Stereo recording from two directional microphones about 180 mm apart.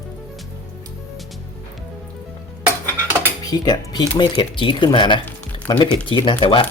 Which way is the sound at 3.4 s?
20° left (ahead or behind).